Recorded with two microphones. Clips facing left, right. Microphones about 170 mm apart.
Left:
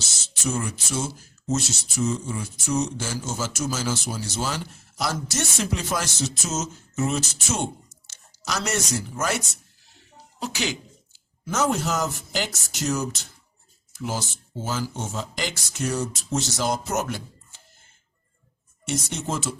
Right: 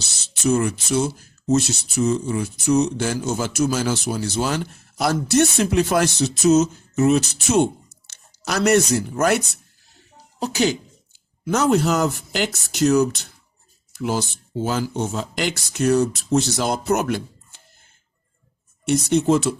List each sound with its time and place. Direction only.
0.0 s speech: 65° right (ahead or behind)
10.4 s speech: 40° right (ahead or behind)
11.4 s speech: 65° right (ahead or behind)
18.9 s speech: 65° right (ahead or behind)